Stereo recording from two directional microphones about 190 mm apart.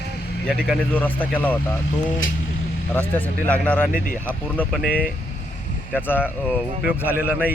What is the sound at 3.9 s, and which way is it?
Speech, 45° left (ahead or behind).